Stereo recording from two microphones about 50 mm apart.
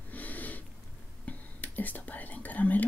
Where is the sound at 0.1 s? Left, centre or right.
Left.